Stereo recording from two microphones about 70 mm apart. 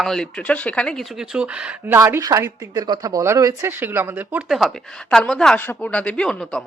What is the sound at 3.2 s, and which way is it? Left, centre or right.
Speech, right.